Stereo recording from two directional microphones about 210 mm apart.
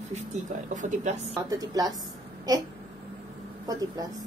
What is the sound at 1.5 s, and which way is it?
Speech, 15° right (ahead or behind).